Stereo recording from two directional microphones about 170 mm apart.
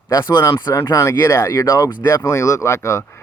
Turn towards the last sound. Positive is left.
turn(degrees=15)  # may be behind; listen again after turning